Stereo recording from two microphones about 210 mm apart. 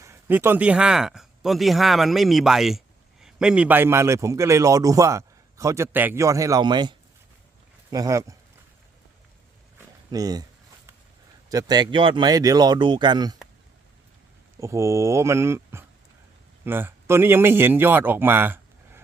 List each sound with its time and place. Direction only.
0.0 s speech: 10° right (ahead or behind)
10.1 s speech: 20° right (ahead or behind)
11.4 s speech: 20° right (ahead or behind)
14.6 s a man's voice: 15° right (ahead or behind)